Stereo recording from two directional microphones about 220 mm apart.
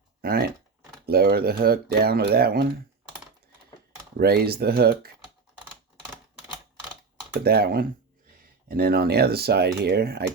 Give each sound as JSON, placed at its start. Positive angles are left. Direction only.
{"t": 0.2, "sound": "speech", "side_deg": -45}
{"t": 4.2, "sound": "speech", "side_deg": -45}
{"t": 7.4, "sound": "speech", "side_deg": -45}